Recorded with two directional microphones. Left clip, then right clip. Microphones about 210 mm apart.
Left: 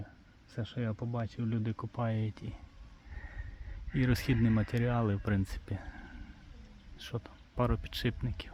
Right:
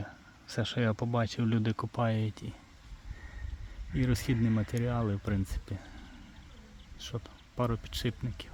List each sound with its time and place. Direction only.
0.0 s speech: 25° right (ahead or behind); by 2.6 s 5° right (ahead or behind)
3.9 s speech: centre (ahead or behind)
7.0 s speech: centre (ahead or behind)